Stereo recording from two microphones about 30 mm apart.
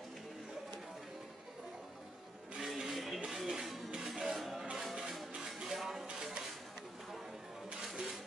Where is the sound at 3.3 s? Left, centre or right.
Centre.